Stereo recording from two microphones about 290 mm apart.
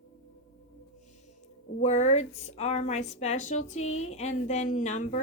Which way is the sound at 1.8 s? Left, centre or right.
Left.